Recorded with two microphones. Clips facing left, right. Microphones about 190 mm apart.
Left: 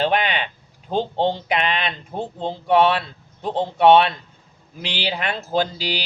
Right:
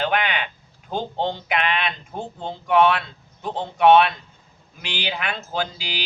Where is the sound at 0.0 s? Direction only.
35° left (ahead or behind).